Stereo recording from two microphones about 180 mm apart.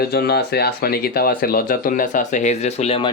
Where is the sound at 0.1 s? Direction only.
60° left (ahead or behind).